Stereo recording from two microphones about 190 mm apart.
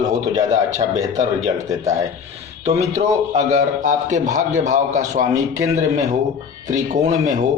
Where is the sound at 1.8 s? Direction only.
15° right (ahead or behind).